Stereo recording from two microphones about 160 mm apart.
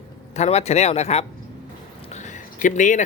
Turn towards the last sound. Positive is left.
turn(degrees=50)  # may be behind; listen again after turning